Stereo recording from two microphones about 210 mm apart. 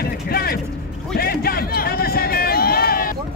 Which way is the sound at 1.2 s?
45° left (ahead or behind).